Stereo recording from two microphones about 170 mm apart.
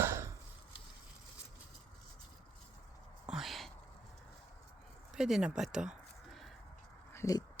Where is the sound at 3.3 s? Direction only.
Centre (ahead or behind).